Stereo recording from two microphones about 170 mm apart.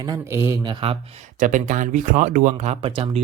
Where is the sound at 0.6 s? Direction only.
35° right (ahead or behind).